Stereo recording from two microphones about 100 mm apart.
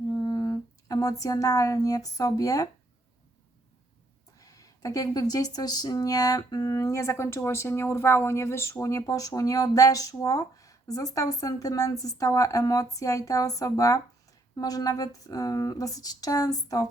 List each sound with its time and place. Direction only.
0.3 s speech: 40° left (ahead or behind)
4.4 s speech: 35° left (ahead or behind)